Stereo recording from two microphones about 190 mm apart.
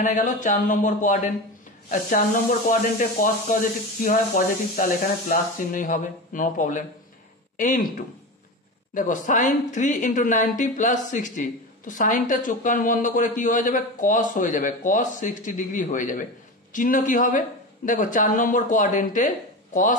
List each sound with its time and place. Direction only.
0.0 s speech: 40° left (ahead or behind)